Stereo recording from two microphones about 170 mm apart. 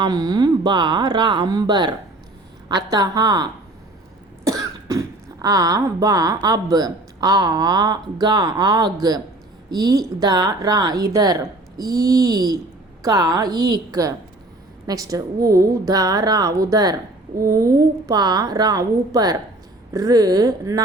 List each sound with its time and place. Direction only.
0.0 s a woman's voice: 25° right (ahead or behind)